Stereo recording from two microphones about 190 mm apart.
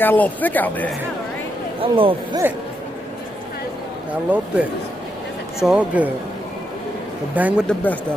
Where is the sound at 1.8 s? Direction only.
30° right (ahead or behind).